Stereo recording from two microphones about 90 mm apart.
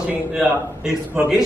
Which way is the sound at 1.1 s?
15° right (ahead or behind).